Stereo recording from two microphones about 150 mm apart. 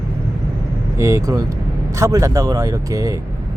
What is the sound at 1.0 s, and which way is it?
Speech, 20° right (ahead or behind).